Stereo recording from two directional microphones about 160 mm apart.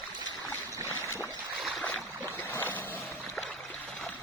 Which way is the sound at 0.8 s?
15° left (ahead or behind).